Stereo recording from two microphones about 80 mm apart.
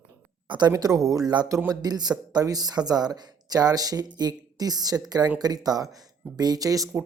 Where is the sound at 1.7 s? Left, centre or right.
Right.